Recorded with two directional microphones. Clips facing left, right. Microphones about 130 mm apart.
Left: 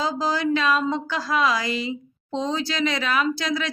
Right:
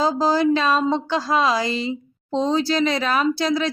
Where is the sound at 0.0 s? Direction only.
35° right (ahead or behind).